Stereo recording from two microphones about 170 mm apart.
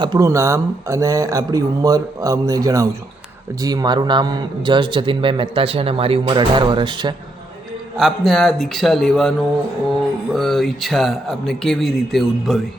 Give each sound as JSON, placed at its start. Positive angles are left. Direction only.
{"t": 0.0, "sound": "a man's voice", "side_deg": -20}
{"t": 7.9, "sound": "speech", "side_deg": 0}
{"t": 10.3, "sound": "speech", "side_deg": 0}